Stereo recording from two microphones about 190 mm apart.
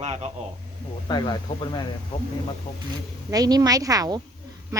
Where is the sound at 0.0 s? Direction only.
30° right (ahead or behind).